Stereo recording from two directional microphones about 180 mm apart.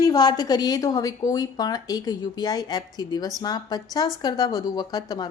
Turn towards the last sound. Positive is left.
turn(degrees=20)  # may be behind; listen again after turning